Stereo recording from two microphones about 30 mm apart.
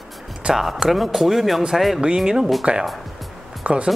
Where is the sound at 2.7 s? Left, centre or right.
Right.